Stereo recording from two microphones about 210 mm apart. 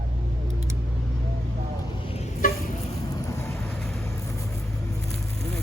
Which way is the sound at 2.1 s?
30° left (ahead or behind).